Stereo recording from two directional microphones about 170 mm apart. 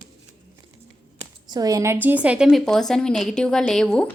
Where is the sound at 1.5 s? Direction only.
20° right (ahead or behind); by 4.1 s 5° left (ahead or behind).